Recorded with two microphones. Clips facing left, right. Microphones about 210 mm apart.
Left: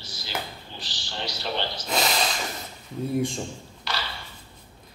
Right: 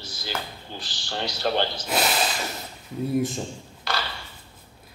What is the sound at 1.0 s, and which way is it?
Speech, 45° right (ahead or behind).